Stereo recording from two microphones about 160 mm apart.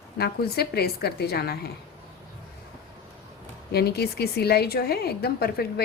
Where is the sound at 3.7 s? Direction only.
80° left.